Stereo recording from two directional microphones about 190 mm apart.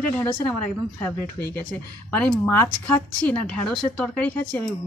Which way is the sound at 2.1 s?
5° left (ahead or behind).